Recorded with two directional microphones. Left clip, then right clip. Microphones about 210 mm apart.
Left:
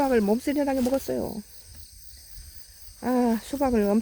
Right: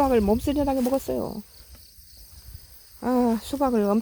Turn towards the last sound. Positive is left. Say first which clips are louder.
# right 1 dB
turn(degrees=-15)  # may be behind; listen again after turning